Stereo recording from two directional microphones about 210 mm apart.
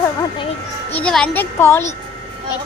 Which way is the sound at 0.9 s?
5° left (ahead or behind).